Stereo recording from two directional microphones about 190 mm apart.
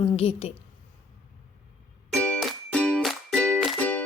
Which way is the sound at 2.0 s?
5° left (ahead or behind).